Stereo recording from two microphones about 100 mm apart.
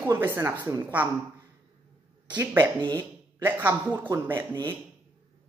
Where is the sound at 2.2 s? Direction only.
15° right (ahead or behind).